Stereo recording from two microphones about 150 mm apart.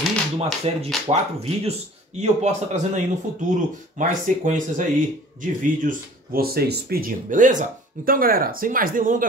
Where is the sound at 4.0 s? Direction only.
60° right (ahead or behind).